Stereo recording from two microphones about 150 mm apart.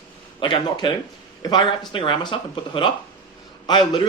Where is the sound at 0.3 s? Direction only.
35° left (ahead or behind).